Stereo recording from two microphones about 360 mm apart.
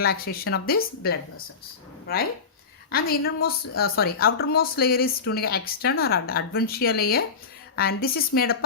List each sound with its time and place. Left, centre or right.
0.0 s a woman's voice: left
2.9 s a woman's voice: left